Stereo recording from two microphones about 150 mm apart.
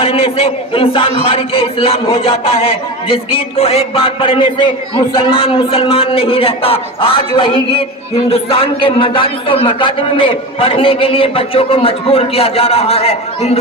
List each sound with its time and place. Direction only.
0.0 s a man's voice: 40° left (ahead or behind)